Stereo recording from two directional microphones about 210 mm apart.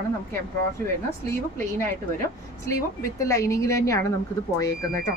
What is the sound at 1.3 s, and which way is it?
Speech, 10° left (ahead or behind).